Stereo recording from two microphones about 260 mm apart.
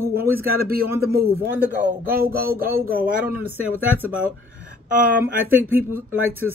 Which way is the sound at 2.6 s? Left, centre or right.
Centre.